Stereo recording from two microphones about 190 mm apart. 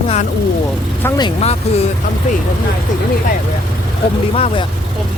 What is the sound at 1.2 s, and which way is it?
Speech, 35° left (ahead or behind).